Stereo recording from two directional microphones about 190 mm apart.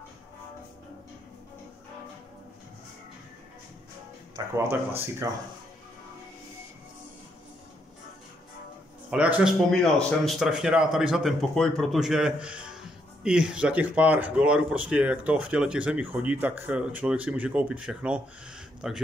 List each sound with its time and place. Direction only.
4.4 s speech: 20° right (ahead or behind)
9.1 s speech: 5° right (ahead or behind)